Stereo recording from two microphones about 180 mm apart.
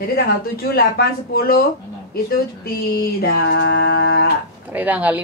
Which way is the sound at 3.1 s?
60° left (ahead or behind).